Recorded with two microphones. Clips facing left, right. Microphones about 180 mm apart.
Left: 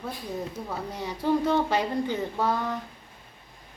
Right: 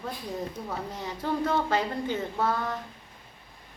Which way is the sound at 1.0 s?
10° left (ahead or behind).